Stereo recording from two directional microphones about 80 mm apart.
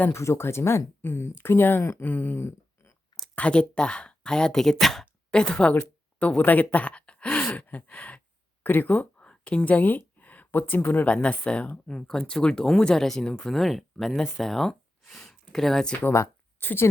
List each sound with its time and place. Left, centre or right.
0.1 s speech: left
3.3 s speech: centre
16.6 s a woman's voice: left